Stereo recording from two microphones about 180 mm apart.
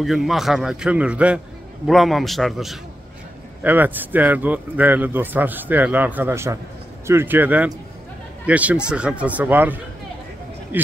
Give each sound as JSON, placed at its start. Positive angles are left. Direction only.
{"t": 0.0, "sound": "a man's voice", "side_deg": 0}